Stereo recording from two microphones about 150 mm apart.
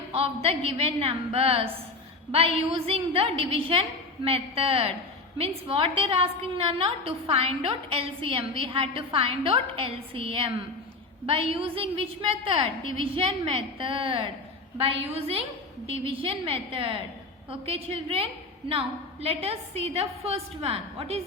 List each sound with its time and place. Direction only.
0.1 s a woman's voice: 40° right (ahead or behind)